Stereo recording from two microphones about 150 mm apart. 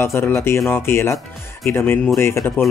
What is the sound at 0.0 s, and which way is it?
Speech, 15° left (ahead or behind).